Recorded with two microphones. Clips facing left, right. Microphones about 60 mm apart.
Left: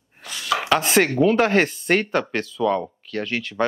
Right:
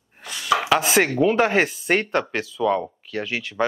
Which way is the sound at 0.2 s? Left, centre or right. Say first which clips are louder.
Right 3 dB; centre.